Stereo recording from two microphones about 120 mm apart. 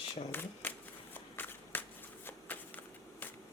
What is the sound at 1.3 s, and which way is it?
Shuffling cards, 15° left (ahead or behind).